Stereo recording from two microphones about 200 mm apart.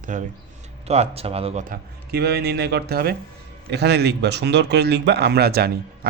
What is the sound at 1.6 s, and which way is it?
Speech, 50° right (ahead or behind).